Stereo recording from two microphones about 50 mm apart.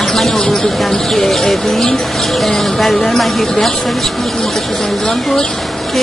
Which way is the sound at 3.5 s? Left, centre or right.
Centre.